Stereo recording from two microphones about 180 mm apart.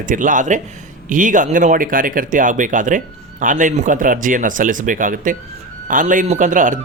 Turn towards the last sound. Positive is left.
turn(degrees=-45)  # may be behind; listen again after turning